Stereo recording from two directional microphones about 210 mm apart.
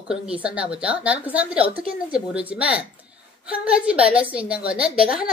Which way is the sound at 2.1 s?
5° right (ahead or behind).